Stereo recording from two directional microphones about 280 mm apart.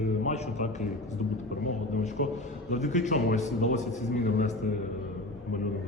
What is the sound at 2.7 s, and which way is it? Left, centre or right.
A man's voice, left.